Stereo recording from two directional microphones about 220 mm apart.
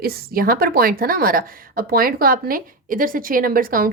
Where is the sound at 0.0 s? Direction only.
45° right (ahead or behind).